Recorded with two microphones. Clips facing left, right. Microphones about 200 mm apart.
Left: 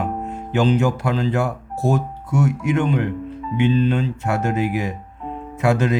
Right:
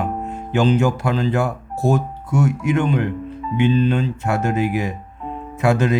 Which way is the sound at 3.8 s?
55° right (ahead or behind).